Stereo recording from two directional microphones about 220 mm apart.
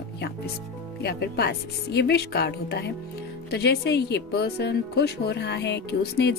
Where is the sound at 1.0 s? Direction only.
50° left (ahead or behind).